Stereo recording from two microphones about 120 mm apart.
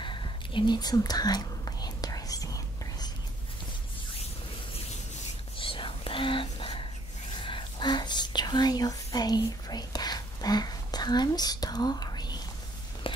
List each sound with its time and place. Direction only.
0.0 s whispering: 40° left (ahead or behind)
5.6 s whispering: 45° left (ahead or behind)
13.0 s a sound: 45° left (ahead or behind)